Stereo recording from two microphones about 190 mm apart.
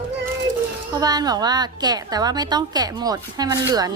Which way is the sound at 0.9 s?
20° right (ahead or behind).